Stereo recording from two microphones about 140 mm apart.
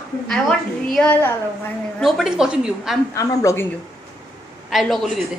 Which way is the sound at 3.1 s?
25° left (ahead or behind).